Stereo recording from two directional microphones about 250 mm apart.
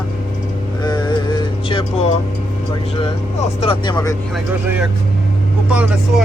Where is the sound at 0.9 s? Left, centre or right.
Centre.